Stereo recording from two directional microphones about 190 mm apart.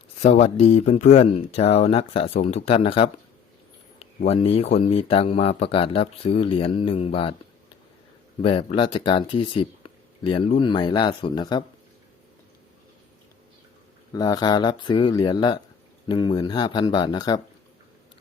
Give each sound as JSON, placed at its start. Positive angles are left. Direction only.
{"t": 0.2, "sound": "speech", "side_deg": 35}
{"t": 4.3, "sound": "speech", "side_deg": 35}
{"t": 8.4, "sound": "speech", "side_deg": 30}
{"t": 14.1, "sound": "speech", "side_deg": 20}